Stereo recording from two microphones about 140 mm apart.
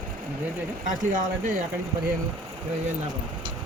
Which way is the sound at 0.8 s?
70° right (ahead or behind).